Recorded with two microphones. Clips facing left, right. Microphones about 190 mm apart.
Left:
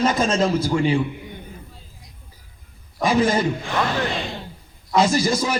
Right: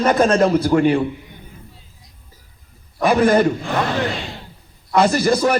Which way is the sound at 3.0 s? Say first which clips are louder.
Right 5 dB; 60° right (ahead or behind).